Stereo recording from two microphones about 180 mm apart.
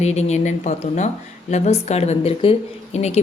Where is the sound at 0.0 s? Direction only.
40° left (ahead or behind).